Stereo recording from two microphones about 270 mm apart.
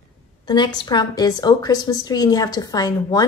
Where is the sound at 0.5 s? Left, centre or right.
Centre.